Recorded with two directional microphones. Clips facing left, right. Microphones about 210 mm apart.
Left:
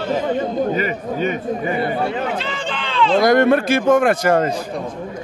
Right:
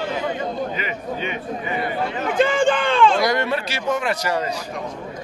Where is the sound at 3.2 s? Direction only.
50° left (ahead or behind).